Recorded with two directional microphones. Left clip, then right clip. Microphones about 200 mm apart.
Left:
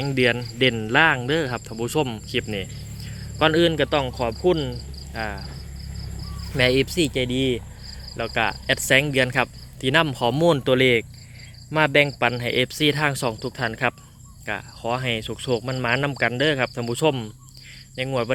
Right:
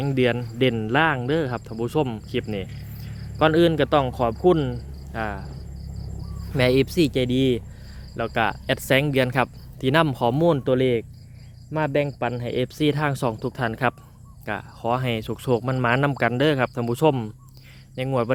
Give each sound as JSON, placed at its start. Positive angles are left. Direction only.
{"t": 0.0, "sound": "speech", "side_deg": -10}
{"t": 4.7, "sound": "cricket", "side_deg": -20}
{"t": 6.5, "sound": "speech", "side_deg": -15}